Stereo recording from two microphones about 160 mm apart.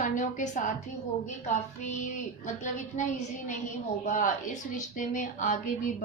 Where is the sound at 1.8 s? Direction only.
50° left (ahead or behind).